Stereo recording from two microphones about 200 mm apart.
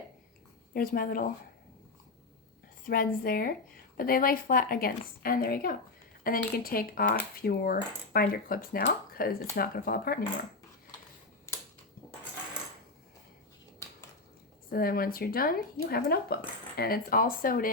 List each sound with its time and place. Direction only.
0.7 s speech: 45° left (ahead or behind)
2.8 s speech: 45° left (ahead or behind)
14.7 s speech: 45° left (ahead or behind)